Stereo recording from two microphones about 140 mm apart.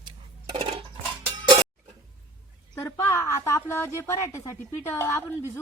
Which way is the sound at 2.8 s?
20° left (ahead or behind).